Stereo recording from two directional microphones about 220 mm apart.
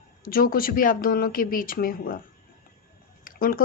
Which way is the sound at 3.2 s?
40° left (ahead or behind).